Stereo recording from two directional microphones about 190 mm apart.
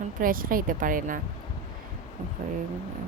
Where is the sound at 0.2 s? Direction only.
50° right (ahead or behind).